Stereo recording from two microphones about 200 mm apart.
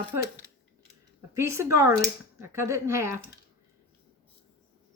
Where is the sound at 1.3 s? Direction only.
15° right (ahead or behind).